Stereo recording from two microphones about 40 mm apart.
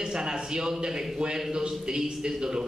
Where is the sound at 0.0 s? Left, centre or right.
Centre.